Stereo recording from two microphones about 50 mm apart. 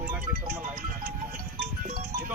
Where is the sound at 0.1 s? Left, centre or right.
Right.